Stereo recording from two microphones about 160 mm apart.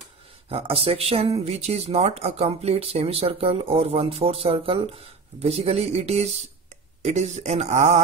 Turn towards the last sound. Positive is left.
turn(degrees=-45)  # may be behind; listen again after turning